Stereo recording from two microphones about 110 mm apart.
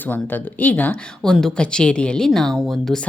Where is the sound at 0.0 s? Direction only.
15° left (ahead or behind).